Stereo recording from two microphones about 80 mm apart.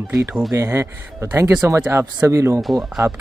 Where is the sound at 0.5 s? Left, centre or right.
Right.